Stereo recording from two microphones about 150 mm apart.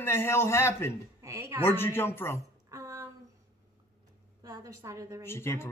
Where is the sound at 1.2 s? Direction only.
20° right (ahead or behind).